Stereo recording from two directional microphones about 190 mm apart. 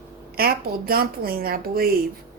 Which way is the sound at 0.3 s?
50° right (ahead or behind).